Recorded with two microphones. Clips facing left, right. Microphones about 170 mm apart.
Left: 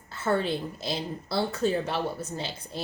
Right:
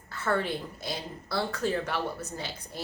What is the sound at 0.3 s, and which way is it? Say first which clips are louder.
Speech: left 3 dB; 25° left (ahead or behind).